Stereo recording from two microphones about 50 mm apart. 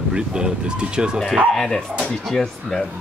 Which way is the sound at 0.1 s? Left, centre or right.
Centre.